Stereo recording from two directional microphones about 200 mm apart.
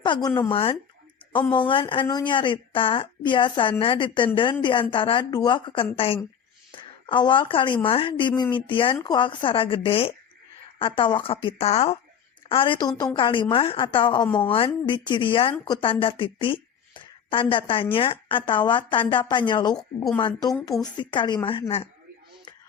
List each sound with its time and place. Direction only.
0.0 s a woman's voice: 20° left (ahead or behind)